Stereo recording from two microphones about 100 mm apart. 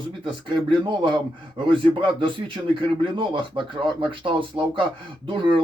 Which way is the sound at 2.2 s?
60° right (ahead or behind).